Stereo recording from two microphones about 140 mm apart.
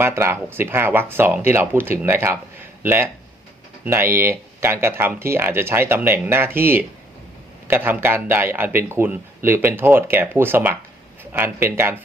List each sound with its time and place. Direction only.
0.0 s a man's voice: 20° right (ahead or behind)